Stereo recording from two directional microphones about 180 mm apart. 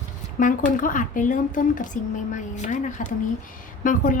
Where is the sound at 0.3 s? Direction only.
45° left (ahead or behind).